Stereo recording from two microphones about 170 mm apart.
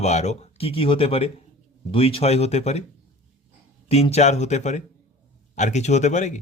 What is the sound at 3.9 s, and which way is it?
Speech, 40° left (ahead or behind).